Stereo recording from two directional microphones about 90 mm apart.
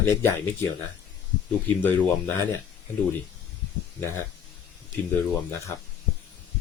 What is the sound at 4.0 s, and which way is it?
Speech, 30° left (ahead or behind).